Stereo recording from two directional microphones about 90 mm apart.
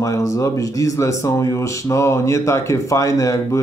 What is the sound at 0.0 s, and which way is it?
Speech, 35° left (ahead or behind).